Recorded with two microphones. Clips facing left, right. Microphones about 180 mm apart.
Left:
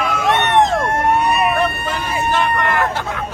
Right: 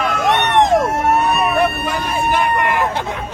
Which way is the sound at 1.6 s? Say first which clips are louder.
Right 2 dB; 10° right (ahead or behind).